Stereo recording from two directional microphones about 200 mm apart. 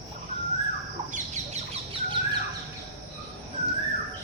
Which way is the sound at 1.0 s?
15° right (ahead or behind).